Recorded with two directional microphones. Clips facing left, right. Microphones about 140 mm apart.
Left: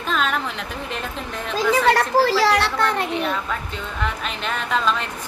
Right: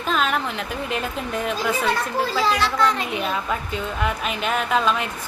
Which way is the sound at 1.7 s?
80° left.